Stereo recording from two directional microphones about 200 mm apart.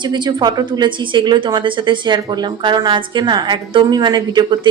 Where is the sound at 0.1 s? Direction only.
20° right (ahead or behind).